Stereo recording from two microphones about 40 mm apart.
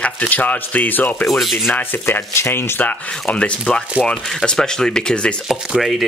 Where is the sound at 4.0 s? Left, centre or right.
Right.